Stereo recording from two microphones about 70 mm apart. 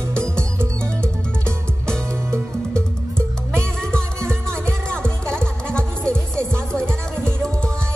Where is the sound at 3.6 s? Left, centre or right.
Centre.